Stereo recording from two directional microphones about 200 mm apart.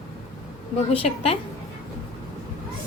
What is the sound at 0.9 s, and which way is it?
Speech, 30° left (ahead or behind).